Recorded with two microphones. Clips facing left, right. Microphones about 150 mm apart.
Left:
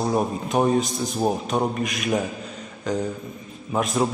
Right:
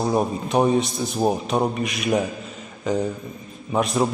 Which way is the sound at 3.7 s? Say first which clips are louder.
Right 2 dB; centre (ahead or behind).